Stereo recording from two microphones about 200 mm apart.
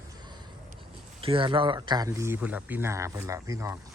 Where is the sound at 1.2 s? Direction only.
25° right (ahead or behind).